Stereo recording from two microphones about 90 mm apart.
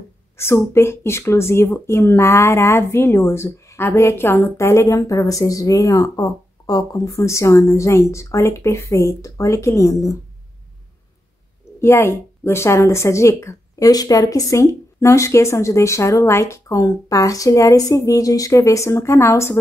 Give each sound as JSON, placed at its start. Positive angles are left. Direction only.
{"t": 0.4, "sound": "speech", "side_deg": 30}
{"t": 11.8, "sound": "speech", "side_deg": 30}